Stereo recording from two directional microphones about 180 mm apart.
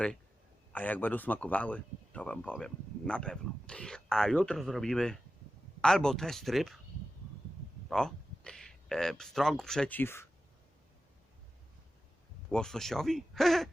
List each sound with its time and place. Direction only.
0.7 s a man's voice: 10° left (ahead or behind)
7.9 s speech: 5° left (ahead or behind)
12.5 s speech: 5° left (ahead or behind)